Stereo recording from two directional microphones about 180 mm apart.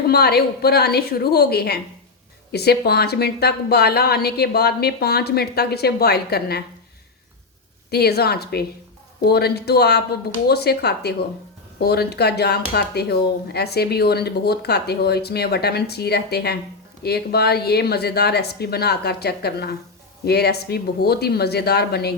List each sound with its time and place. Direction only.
0.1 s speech: 60° left (ahead or behind)
7.9 s speech: 60° left (ahead or behind)